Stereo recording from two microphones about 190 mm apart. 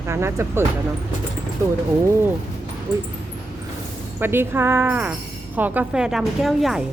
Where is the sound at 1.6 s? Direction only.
15° right (ahead or behind).